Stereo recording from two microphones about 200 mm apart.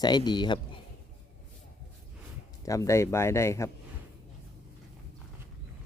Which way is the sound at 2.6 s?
15° left (ahead or behind).